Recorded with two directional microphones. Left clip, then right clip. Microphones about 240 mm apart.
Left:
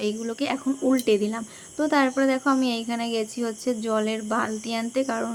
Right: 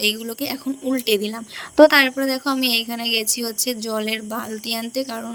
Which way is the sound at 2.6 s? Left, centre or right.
Right.